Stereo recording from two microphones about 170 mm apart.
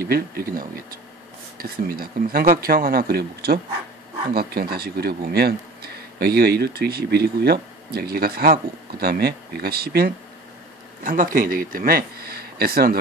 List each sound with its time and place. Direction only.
0.0 s speech: 65° right (ahead or behind)